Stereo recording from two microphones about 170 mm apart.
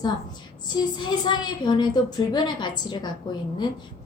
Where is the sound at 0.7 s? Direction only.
25° left (ahead or behind).